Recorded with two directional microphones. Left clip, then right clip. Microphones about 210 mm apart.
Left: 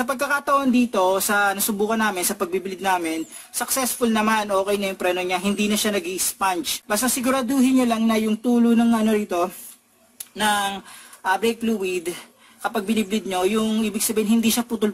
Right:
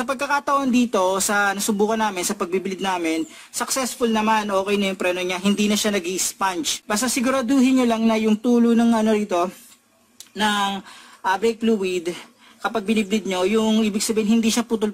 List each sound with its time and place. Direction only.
0.0 s speech: 40° right (ahead or behind)